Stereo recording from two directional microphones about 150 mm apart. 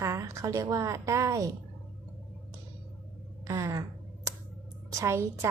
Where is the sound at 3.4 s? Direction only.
20° right (ahead or behind).